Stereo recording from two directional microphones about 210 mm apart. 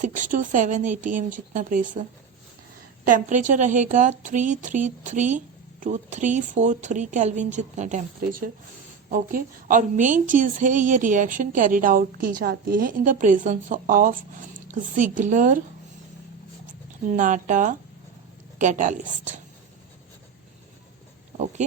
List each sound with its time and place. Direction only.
0.0 s a woman's voice: 40° right (ahead or behind)
17.1 s a woman's voice: 40° right (ahead or behind)